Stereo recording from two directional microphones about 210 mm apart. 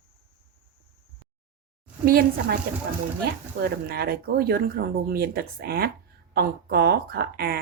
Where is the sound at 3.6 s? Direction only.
45° right (ahead or behind).